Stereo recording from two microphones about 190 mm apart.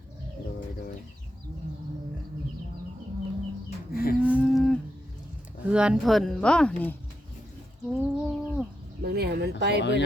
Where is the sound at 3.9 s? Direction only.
50° left (ahead or behind).